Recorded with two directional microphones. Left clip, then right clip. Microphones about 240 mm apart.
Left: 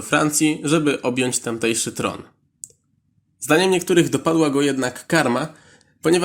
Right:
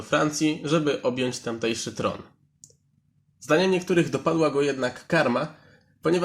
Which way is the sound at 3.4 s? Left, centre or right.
Left.